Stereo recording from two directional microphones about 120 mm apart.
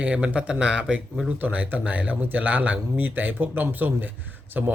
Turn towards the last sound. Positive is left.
turn(degrees=-15)  # may be behind; listen again after turning